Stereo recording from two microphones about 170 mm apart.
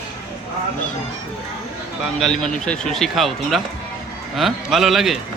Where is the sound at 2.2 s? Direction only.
5° left (ahead or behind).